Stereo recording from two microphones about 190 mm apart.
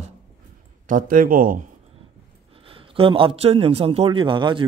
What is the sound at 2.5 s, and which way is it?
A man's voice, 30° right (ahead or behind).